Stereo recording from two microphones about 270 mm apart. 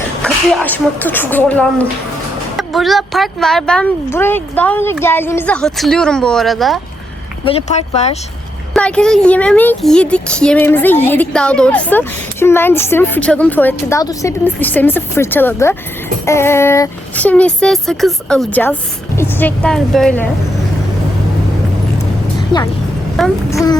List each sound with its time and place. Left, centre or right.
0.2 s speech: centre
7.4 s speech: left
8.7 s speech: centre
23.1 s a child's voice: centre